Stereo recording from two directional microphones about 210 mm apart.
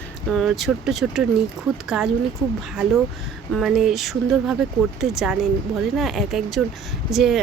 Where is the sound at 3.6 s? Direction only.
Centre (ahead or behind).